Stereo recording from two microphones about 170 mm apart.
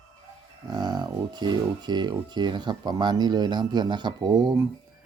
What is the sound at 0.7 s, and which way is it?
Speech, 25° right (ahead or behind).